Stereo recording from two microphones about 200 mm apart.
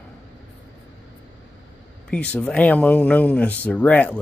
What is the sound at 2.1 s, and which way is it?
Speech, 5° left (ahead or behind).